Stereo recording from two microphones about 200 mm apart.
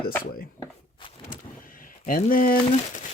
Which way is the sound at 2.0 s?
45° left (ahead or behind).